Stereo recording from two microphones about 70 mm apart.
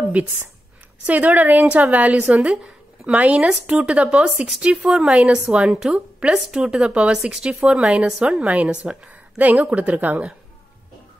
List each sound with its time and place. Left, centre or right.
0.2 s a woman's voice: centre